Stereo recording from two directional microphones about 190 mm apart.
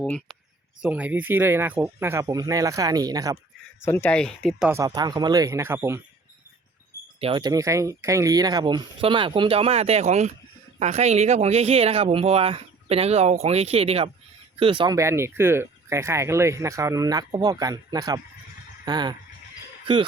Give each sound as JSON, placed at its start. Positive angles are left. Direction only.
{"t": 0.0, "sound": "speech", "side_deg": 0}
{"t": 3.8, "sound": "speech", "side_deg": 10}
{"t": 4.7, "sound": "speech", "side_deg": -20}
{"t": 7.2, "sound": "speech", "side_deg": -25}
{"t": 14.9, "sound": "speech", "side_deg": -15}